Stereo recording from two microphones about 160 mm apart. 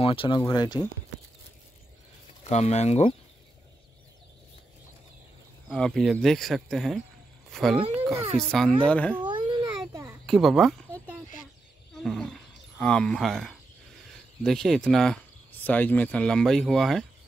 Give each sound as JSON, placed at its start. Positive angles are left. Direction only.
{"t": 0.0, "sound": "speech", "side_deg": 35}
{"t": 2.4, "sound": "speech", "side_deg": 45}
{"t": 5.7, "sound": "speech", "side_deg": 5}
{"t": 9.2, "sound": "a sound", "side_deg": -25}
{"t": 10.2, "sound": "speech", "side_deg": 0}
{"t": 12.0, "sound": "speech", "side_deg": 5}